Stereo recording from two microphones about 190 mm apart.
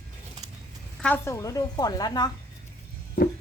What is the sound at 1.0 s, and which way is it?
A woman's voice, 10° left (ahead or behind).